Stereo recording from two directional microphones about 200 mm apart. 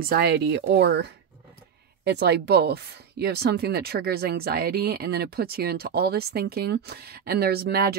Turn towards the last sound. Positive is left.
turn(degrees=-50)  # may be behind; listen again after turning